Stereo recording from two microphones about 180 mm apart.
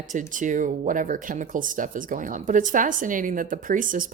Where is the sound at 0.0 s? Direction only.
45° right (ahead or behind).